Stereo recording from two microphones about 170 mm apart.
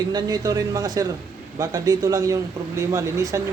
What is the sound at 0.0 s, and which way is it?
Speech, 25° right (ahead or behind).